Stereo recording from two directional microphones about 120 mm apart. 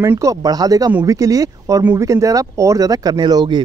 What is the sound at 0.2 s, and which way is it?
Speech, 30° right (ahead or behind).